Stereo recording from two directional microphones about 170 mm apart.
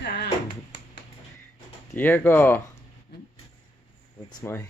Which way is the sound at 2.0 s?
10° left (ahead or behind).